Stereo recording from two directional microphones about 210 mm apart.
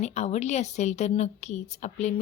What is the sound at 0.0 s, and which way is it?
A woman's voice, 30° left (ahead or behind).